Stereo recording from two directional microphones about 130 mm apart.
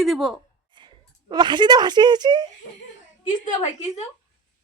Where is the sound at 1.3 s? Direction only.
35° right (ahead or behind).